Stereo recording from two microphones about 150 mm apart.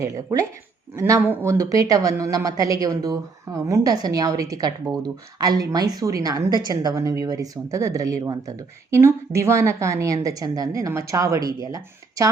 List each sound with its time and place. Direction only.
0.0 s speech: 20° right (ahead or behind)